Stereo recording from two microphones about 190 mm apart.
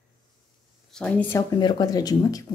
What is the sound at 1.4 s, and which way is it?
Speech, 20° left (ahead or behind).